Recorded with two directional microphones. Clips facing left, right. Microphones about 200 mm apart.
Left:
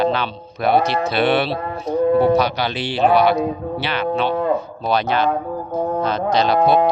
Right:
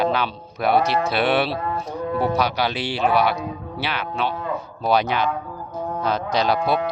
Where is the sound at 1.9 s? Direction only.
60° left (ahead or behind).